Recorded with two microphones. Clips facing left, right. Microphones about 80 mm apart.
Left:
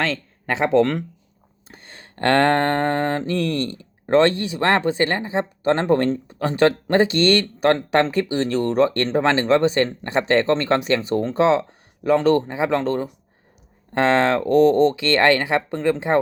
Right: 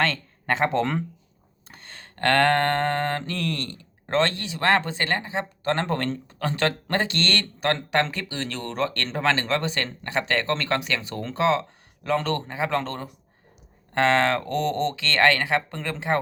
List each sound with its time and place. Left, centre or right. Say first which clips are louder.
0.0 s speech: left 1 dB; centre
1.7 s a sound: left 1 dB; centre
2.1 s speech: left 3 dB; left